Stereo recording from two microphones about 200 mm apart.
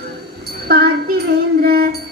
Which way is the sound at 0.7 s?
50° right (ahead or behind).